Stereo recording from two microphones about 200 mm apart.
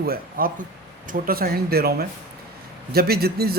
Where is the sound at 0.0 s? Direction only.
45° right (ahead or behind).